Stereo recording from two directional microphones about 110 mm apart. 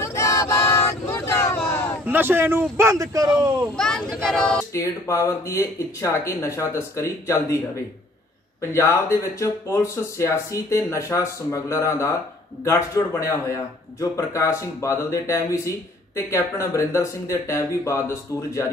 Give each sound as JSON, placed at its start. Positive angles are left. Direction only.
{"t": 0.0, "sound": "a sound", "side_deg": 25}
{"t": 2.0, "sound": "a man's voice", "side_deg": -20}
{"t": 3.7, "sound": "speech", "side_deg": 5}
{"t": 4.7, "sound": "speech", "side_deg": 30}